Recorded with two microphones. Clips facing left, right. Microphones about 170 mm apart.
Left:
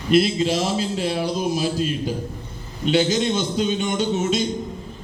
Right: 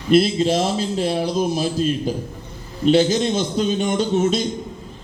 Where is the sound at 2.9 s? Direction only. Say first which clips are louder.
Right 2 dB; 35° right (ahead or behind).